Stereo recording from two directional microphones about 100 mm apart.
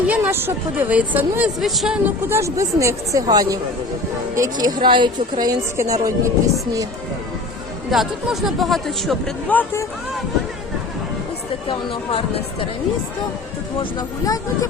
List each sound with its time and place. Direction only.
0.1 s a woman's voice: 20° right (ahead or behind)
1.6 s speech: centre (ahead or behind)
2.0 s speech: 25° right (ahead or behind); by 5.5 s 45° right (ahead or behind)
5.7 s speech: 35° right (ahead or behind)
7.9 s speech: centre (ahead or behind)
9.5 s speech: 15° left (ahead or behind)